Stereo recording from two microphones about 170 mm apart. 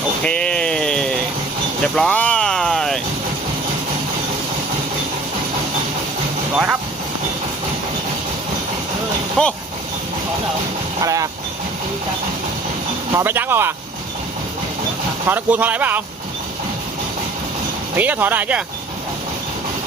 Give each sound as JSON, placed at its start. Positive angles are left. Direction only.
{"t": 0.2, "sound": "a sound", "side_deg": 5}
{"t": 1.8, "sound": "vehicle", "side_deg": 5}
{"t": 9.4, "sound": "speech", "side_deg": 5}
{"t": 11.0, "sound": "vehicle", "side_deg": -20}
{"t": 13.1, "sound": "speech", "side_deg": -10}
{"t": 15.3, "sound": "speech", "side_deg": -10}
{"t": 17.9, "sound": "speech", "side_deg": -10}